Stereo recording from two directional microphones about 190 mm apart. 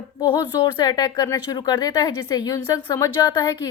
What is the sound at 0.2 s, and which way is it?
A woman's voice, 25° left (ahead or behind).